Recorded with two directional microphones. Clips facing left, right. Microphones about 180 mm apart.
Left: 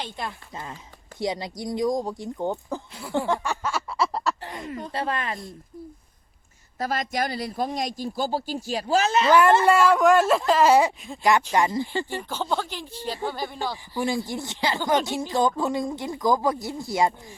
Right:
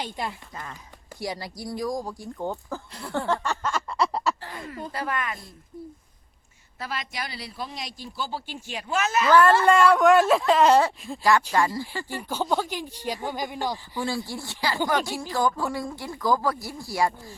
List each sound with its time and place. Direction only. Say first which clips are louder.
0.0 s speech: right 1 dB; 10° right (ahead or behind)
0.5 s speech: left 2 dB; 25° left (ahead or behind)
2.9 s speech: left 1 dB; 5° left (ahead or behind)
4.4 s a sound: left 4 dB; 20° left (ahead or behind)
4.9 s speech: left 2 dB; 25° left (ahead or behind)
6.7 s speech: left 7 dB; 45° left (ahead or behind)
9.3 s a woman's voice: even; 15° left (ahead or behind)
9.6 s speech: even; 5° left (ahead or behind); by 12.0 s 20° left (ahead or behind)
12.0 s speech: right 1 dB; 10° right (ahead or behind)
13.9 s a woman's voice: left 3 dB; 15° left (ahead or behind)